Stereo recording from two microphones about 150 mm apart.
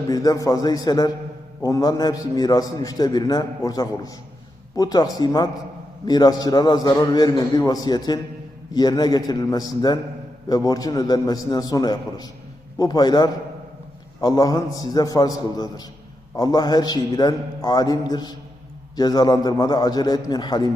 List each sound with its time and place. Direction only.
0.1 s a man's voice: 25° left (ahead or behind)